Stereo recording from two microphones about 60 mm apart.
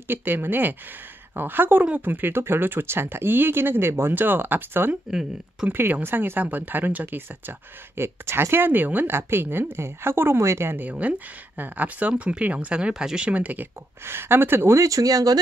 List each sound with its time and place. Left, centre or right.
0.1 s speech: right
10.8 s speech: right
14.0 s speech: right
14.8 s speech: right